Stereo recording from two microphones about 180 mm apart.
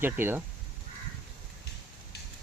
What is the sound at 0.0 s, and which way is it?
Speech, 10° right (ahead or behind).